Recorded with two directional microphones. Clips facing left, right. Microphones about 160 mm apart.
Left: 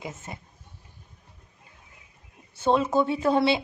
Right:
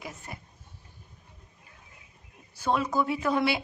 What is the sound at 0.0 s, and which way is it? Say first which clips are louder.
Speech: left 4 dB; 20° left (ahead or behind).